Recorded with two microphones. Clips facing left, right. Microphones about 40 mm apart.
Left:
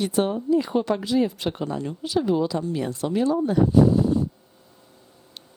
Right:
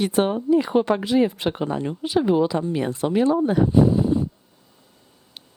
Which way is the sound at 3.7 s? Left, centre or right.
Right.